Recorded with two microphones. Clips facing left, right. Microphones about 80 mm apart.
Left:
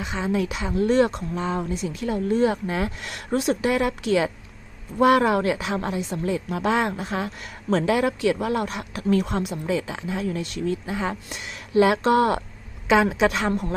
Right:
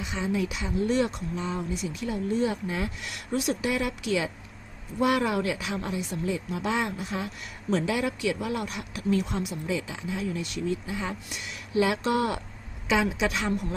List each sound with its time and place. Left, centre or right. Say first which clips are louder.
0.0 s speech: left 4 dB; left